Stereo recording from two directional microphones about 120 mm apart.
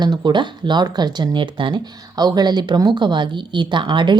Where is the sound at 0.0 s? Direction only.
35° right (ahead or behind).